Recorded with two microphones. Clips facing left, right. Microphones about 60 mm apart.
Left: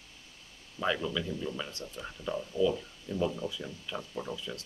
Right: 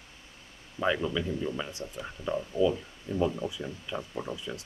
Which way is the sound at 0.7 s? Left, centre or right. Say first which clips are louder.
Right 3 dB; centre.